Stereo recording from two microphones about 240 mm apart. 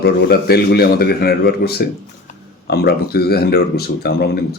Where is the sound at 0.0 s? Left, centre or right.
Left.